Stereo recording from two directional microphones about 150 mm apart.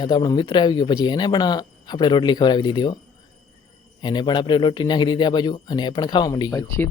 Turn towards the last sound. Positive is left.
turn(degrees=25)  # may be behind; listen again after turning